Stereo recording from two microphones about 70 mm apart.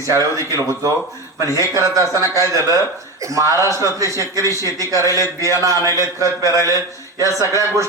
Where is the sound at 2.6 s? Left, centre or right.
Left.